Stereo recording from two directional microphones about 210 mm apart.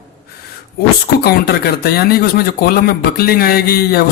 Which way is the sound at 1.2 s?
50° left (ahead or behind).